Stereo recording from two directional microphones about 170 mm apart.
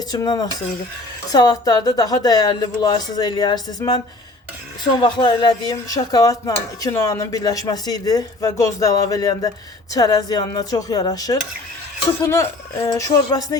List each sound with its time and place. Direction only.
0.1 s speech: 25° left (ahead or behind)